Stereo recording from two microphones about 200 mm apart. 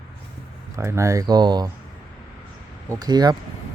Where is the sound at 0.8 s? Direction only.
15° right (ahead or behind).